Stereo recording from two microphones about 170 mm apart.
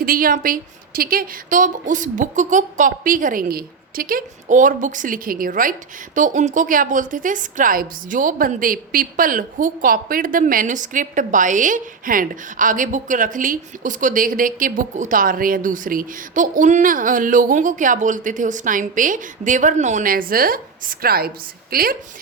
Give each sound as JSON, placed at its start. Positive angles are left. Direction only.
{"t": 0.0, "sound": "a woman's voice", "side_deg": -55}